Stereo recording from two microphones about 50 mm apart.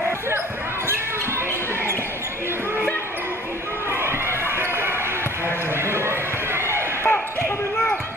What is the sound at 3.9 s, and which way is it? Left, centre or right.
Crowd, right.